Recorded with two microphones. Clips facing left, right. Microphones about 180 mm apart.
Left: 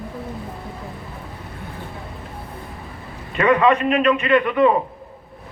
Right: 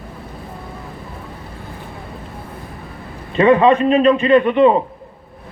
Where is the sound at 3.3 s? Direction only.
30° right (ahead or behind).